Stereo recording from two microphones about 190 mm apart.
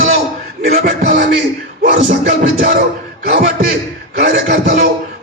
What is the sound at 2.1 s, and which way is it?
Speech, 45° right (ahead or behind).